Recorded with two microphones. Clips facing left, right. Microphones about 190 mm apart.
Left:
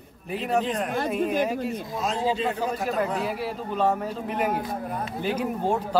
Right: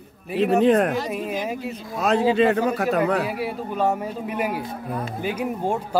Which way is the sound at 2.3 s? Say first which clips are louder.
Right 7 dB; 70° right (ahead or behind).